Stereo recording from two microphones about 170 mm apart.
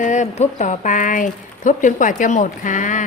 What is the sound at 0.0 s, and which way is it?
Speech, 45° left (ahead or behind).